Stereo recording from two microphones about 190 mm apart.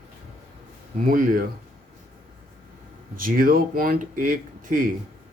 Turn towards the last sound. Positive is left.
turn(degrees=-45)  # may be behind; listen again after turning